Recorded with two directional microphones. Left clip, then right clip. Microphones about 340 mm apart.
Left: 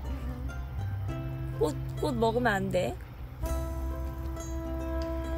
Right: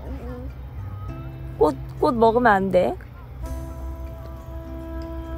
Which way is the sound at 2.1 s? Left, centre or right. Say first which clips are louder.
Right 11 dB; right.